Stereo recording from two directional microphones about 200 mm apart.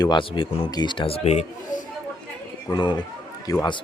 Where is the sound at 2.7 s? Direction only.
20° left (ahead or behind).